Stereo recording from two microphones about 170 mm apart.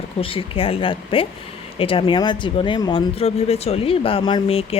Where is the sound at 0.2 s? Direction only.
30° left (ahead or behind).